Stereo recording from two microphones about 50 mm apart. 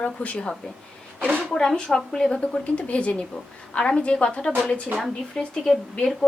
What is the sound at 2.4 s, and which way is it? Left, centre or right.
A woman's voice, left.